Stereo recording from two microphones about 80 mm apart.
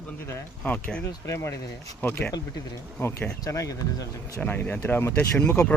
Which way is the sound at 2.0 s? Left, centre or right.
Left.